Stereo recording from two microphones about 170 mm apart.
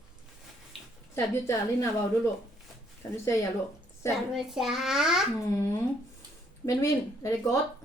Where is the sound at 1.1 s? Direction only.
15° left (ahead or behind).